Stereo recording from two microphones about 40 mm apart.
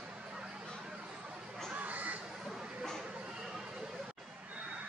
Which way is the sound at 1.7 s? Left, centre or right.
Right.